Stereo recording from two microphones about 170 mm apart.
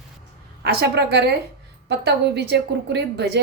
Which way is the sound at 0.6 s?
75° right (ahead or behind).